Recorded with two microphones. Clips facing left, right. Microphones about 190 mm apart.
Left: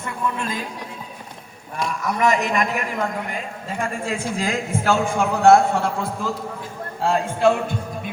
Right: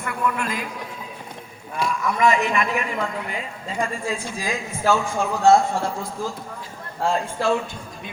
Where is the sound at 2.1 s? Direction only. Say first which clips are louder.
Even; 40° left (ahead or behind).